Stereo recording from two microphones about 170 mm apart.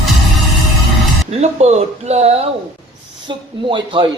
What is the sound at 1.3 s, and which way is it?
A man's voice, 40° right (ahead or behind).